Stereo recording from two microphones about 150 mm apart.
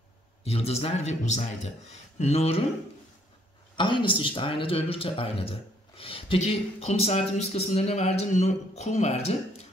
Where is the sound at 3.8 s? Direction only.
30° left (ahead or behind).